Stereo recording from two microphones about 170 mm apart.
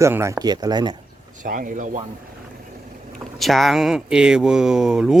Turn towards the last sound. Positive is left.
turn(degrees=-5)  # may be behind; listen again after turning